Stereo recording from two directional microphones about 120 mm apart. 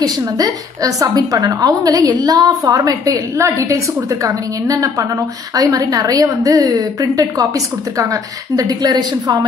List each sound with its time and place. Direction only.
0.0 s a woman's voice: 30° right (ahead or behind)